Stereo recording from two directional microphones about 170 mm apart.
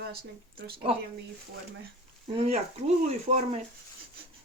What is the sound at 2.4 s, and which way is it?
Speech, 40° right (ahead or behind).